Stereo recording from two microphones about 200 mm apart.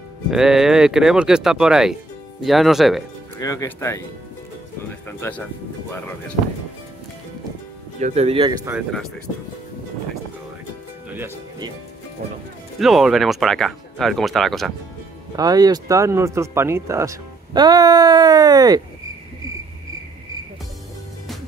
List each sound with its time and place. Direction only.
0.3 s speech: 5° right (ahead or behind)
3.3 s speech: 15° left (ahead or behind)
5.0 s speech: 10° left (ahead or behind)
8.0 s speech: 35° right (ahead or behind)
11.1 s speech: 10° right (ahead or behind)
12.7 s speech: centre (ahead or behind)
15.3 s speech: 20° right (ahead or behind)